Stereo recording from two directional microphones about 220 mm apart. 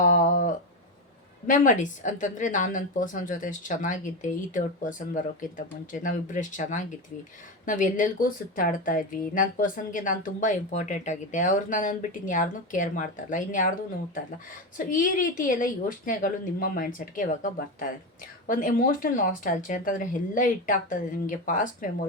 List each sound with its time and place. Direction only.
0.0 s a sound: 35° left (ahead or behind)
1.5 s a woman's voice: 35° left (ahead or behind)
14.8 s a woman's voice: 40° left (ahead or behind)